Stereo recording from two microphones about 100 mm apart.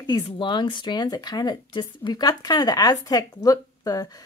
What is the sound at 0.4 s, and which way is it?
Speech, 55° left (ahead or behind).